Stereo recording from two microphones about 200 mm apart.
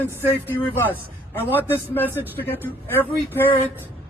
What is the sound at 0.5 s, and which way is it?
A woman's voice, 10° left (ahead or behind).